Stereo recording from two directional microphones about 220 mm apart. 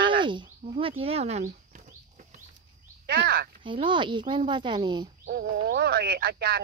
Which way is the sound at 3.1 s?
45° right (ahead or behind).